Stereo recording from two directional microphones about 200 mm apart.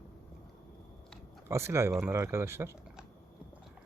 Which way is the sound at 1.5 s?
15° right (ahead or behind).